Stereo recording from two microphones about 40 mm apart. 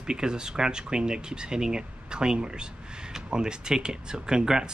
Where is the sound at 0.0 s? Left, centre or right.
Centre.